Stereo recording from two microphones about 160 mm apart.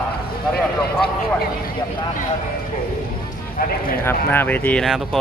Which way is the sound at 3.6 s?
65° left (ahead or behind).